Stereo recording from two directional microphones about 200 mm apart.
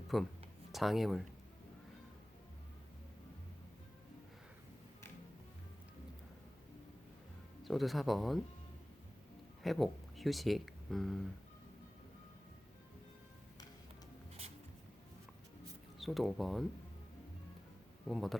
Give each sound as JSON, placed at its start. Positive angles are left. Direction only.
{"t": 0.1, "sound": "speech", "side_deg": 0}
{"t": 7.6, "sound": "speech", "side_deg": 0}
{"t": 9.6, "sound": "speech", "side_deg": 0}
{"t": 16.0, "sound": "speech", "side_deg": 0}
{"t": 18.0, "sound": "speech", "side_deg": 0}